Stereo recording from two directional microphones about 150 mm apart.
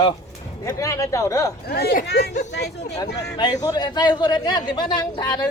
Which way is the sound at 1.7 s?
90° left.